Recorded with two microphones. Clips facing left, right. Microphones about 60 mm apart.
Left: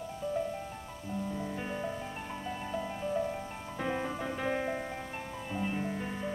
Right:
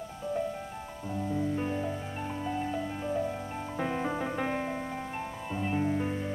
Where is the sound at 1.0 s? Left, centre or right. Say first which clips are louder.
Right 4 dB; centre.